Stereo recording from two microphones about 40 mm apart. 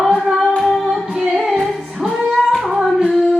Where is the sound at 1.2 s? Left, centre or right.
Centre.